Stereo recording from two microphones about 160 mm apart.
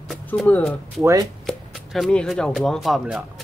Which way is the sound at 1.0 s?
20° right (ahead or behind).